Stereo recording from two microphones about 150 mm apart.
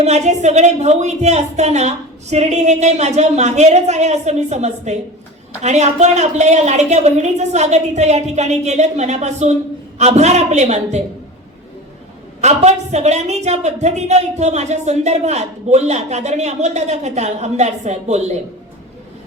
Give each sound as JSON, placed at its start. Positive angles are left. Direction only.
{"t": 0.0, "sound": "a woman's voice", "side_deg": -50}
{"t": 12.4, "sound": "a woman's voice", "side_deg": -50}